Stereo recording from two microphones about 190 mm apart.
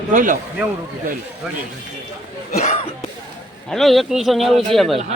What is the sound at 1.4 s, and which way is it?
Speech, 5° right (ahead or behind).